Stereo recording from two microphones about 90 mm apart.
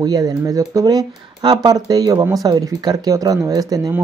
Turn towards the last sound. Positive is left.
turn(degrees=-40)  # may be behind; listen again after turning